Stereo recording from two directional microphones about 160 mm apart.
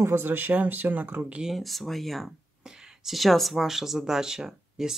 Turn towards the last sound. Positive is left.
turn(degrees=-5)  # may be behind; listen again after turning